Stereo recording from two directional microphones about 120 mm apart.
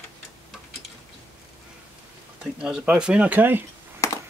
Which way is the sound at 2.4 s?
5° right (ahead or behind).